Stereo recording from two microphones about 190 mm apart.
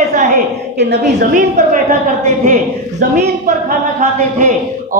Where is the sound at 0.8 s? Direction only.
65° right (ahead or behind).